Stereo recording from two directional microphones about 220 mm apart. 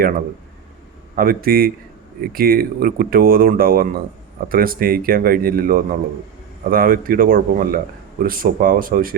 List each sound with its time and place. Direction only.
1.1 s speech: 40° right (ahead or behind)